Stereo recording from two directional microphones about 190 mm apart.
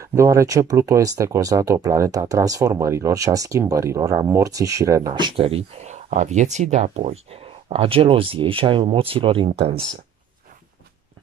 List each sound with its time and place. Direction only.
0.0 s speech: 15° right (ahead or behind)